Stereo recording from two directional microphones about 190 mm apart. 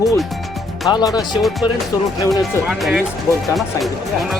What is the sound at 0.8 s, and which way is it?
Speech, 20° left (ahead or behind).